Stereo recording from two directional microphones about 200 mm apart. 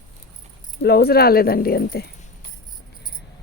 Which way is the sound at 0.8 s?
55° left (ahead or behind).